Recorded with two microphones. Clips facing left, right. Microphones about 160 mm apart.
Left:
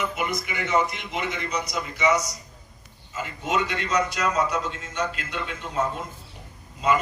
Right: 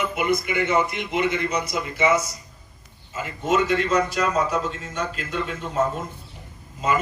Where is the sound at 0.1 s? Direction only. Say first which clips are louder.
Right 6 dB; 55° right (ahead or behind).